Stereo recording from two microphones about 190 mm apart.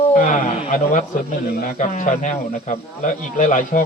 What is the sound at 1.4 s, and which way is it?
A man's voice, 50° left (ahead or behind).